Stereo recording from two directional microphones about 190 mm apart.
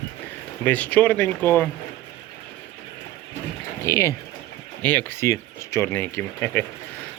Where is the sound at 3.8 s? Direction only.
15° left (ahead or behind).